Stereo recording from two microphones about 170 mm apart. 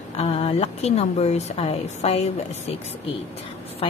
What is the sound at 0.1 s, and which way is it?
Speech, 35° left (ahead or behind).